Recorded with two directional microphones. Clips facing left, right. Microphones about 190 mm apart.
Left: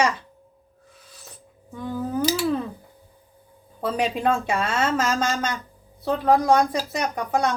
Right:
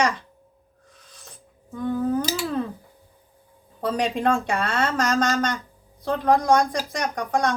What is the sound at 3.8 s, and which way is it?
Speech, 5° left (ahead or behind).